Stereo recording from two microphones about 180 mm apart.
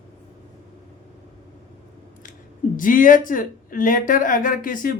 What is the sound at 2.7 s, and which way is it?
Speech, 50° left (ahead or behind).